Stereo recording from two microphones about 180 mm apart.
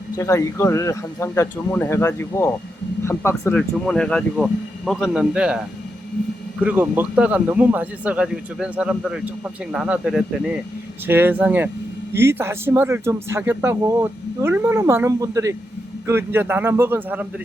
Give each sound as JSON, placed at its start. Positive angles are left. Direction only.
{"t": 0.2, "sound": "speech", "side_deg": 15}